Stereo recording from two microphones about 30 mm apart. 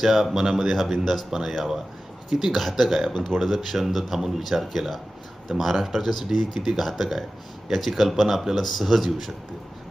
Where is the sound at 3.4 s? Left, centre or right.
Centre.